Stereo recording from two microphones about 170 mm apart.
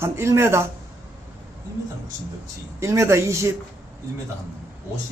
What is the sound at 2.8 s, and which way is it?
Speech, 15° right (ahead or behind).